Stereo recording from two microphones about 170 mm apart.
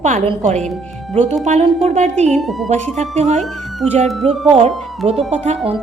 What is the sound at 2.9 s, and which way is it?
A woman's voice, 40° right (ahead or behind).